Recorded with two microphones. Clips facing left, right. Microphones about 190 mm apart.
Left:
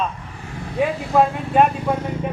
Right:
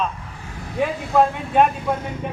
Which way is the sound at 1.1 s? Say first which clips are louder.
Even; 5° left (ahead or behind).